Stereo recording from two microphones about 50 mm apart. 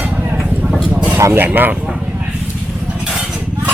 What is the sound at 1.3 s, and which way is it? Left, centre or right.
Speech, right.